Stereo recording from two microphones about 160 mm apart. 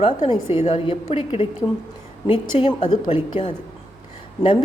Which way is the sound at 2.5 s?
40° left (ahead or behind).